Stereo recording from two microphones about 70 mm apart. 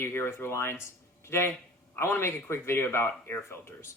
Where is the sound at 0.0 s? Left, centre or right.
Left.